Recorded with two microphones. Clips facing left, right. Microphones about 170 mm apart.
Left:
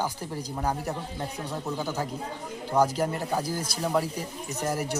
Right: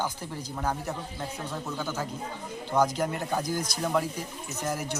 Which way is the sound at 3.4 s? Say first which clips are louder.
Even; 30° left (ahead or behind).